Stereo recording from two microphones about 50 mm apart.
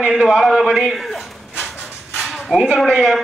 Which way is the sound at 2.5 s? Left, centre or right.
Centre.